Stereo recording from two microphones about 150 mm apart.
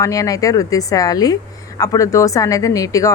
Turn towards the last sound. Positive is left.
turn(degrees=20)  # may be behind; listen again after turning